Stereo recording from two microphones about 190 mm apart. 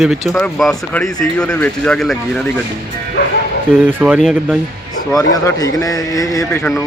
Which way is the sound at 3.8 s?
10° right (ahead or behind).